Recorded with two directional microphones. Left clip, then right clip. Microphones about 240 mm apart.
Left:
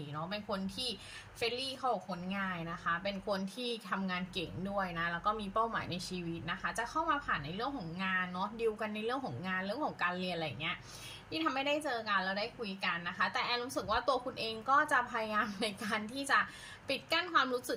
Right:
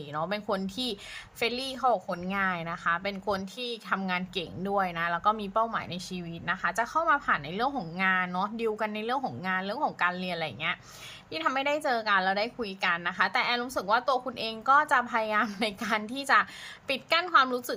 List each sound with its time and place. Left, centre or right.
0.1 s a woman's voice: centre